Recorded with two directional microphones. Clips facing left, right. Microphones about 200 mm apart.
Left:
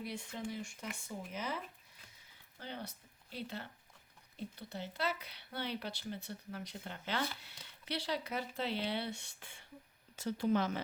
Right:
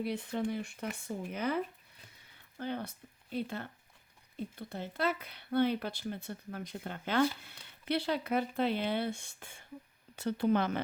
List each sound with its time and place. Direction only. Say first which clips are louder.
0.0 s speech: right 8 dB; 60° right (ahead or behind)
10.2 s speech: right 4 dB; 60° right (ahead or behind)